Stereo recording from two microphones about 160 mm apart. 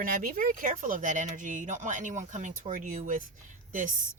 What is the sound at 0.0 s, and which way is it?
A woman's voice, 60° right (ahead or behind).